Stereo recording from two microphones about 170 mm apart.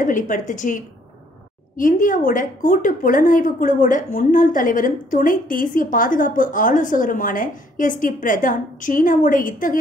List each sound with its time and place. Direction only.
0.0 s a woman's voice: 50° left (ahead or behind)